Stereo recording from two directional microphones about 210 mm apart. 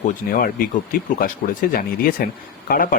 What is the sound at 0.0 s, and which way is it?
Speech, 40° left (ahead or behind).